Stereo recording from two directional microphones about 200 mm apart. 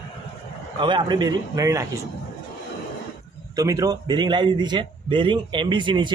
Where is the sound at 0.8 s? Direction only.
25° right (ahead or behind).